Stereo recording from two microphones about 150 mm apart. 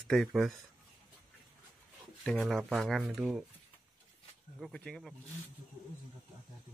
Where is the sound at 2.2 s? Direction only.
Centre (ahead or behind).